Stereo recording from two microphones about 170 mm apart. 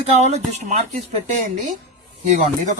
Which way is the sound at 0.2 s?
40° right (ahead or behind).